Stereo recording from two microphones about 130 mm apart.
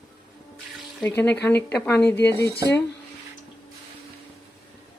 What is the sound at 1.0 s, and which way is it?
Speech, 15° left (ahead or behind).